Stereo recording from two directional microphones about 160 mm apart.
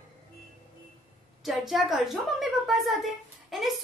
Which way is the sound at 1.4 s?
Centre (ahead or behind).